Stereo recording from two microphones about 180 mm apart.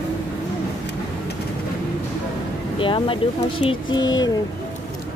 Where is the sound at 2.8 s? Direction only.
30° left (ahead or behind).